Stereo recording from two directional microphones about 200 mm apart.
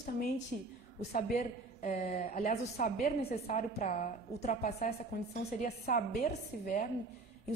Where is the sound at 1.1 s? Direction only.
40° left (ahead or behind).